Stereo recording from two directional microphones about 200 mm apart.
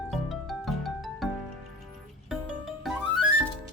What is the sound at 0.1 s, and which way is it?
Music, centre (ahead or behind).